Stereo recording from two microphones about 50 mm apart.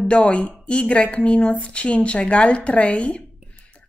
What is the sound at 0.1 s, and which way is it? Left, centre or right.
Speech, left.